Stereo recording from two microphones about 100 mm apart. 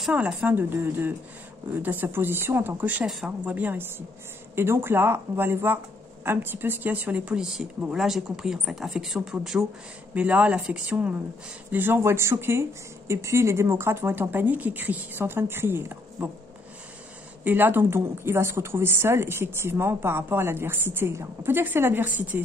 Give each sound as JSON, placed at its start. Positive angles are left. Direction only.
{"t": 0.1, "sound": "speech", "side_deg": -15}
{"t": 10.1, "sound": "speech", "side_deg": -15}
{"t": 17.5, "sound": "speech", "side_deg": -20}